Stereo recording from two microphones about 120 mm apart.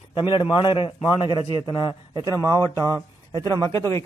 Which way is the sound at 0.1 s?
40° left (ahead or behind).